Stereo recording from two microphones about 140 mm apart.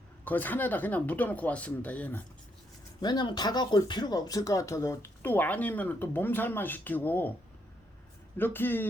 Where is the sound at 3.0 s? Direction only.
30° left (ahead or behind); by 7.3 s 15° left (ahead or behind).